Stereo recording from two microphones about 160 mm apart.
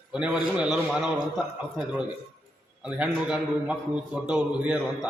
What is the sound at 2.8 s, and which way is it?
A man's voice, 5° right (ahead or behind).